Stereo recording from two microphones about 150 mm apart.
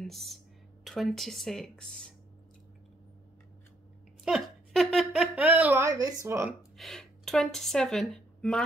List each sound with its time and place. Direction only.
0.0 s speech: centre (ahead or behind)
4.2 s a sound: centre (ahead or behind)
5.9 s speech: 25° right (ahead or behind)
6.8 s speech: centre (ahead or behind)